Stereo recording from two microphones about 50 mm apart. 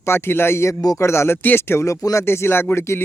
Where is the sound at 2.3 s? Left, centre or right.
Left.